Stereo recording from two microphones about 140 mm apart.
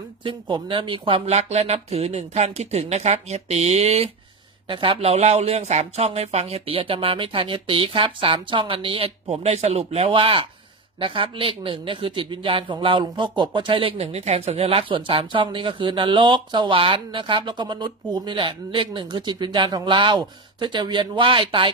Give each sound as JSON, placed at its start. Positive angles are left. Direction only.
{"t": 0.2, "sound": "speech", "side_deg": -35}
{"t": 4.6, "sound": "speech", "side_deg": -40}